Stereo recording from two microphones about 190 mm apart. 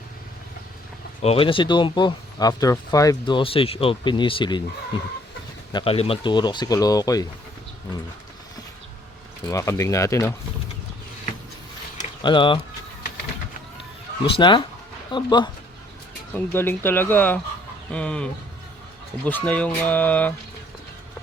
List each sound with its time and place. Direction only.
1.2 s speech: 30° left (ahead or behind)
5.7 s speech: 30° left (ahead or behind)
9.5 s speech: 15° left (ahead or behind)
12.2 s speech: 25° left (ahead or behind)
14.3 s speech: 25° left (ahead or behind)
16.3 s speech: 10° left (ahead or behind)